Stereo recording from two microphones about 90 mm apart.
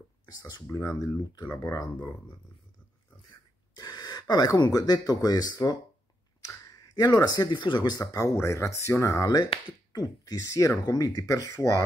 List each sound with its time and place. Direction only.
0.3 s speech: 50° left (ahead or behind)
0.7 s speech: 35° left (ahead or behind)
3.3 s gasp: 50° left (ahead or behind)
4.6 s speech: 45° left (ahead or behind)
8.0 s speech: 40° left (ahead or behind)
9.7 s speech: 50° left (ahead or behind); by 11.8 s 35° left (ahead or behind)